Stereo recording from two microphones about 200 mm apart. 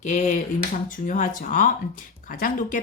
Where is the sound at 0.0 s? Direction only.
35° left (ahead or behind).